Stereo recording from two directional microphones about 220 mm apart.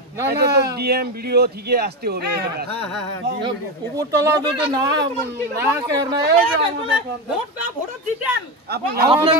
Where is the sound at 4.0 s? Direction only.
15° right (ahead or behind).